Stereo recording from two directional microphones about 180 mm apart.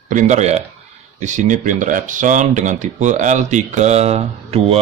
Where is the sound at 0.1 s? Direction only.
40° right (ahead or behind).